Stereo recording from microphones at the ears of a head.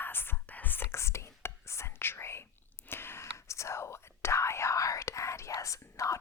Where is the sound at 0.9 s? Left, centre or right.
Left.